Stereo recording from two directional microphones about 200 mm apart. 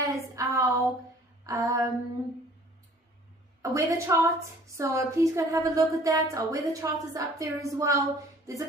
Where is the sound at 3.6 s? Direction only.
15° right (ahead or behind).